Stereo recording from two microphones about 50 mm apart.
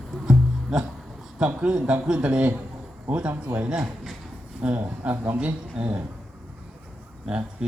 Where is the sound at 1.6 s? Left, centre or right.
Centre.